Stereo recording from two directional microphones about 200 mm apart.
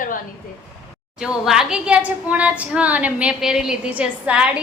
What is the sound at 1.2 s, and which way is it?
A woman's voice, 5° right (ahead or behind).